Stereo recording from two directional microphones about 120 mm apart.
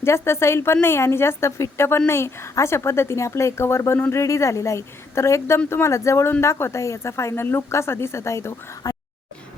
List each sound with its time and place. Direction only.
0.0 s a woman's voice: 20° left (ahead or behind)